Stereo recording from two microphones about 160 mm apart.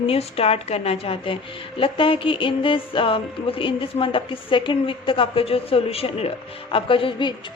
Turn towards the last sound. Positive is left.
turn(degrees=35)  # may be behind; listen again after turning